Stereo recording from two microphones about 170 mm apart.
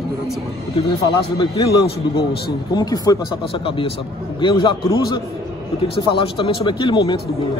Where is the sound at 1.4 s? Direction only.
30° left (ahead or behind).